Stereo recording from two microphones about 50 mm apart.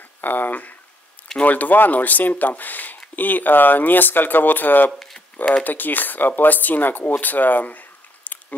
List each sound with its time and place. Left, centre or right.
0.2 s speech: left